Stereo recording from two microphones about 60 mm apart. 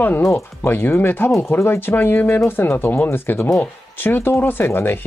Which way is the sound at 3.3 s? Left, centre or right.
Left.